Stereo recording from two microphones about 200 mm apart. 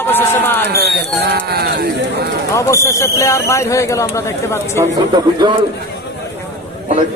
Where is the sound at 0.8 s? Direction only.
55° right (ahead or behind).